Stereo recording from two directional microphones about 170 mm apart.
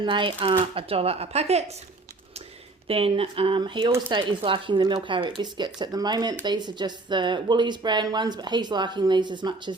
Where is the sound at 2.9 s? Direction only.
35° right (ahead or behind).